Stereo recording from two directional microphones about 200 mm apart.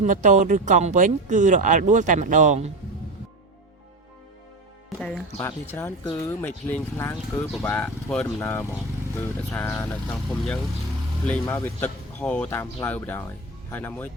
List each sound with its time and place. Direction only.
0.0 s speech: 35° right (ahead or behind)
4.9 s speech: 5° left (ahead or behind)